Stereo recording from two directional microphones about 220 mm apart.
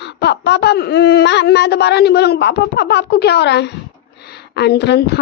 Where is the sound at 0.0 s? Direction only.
50° left (ahead or behind).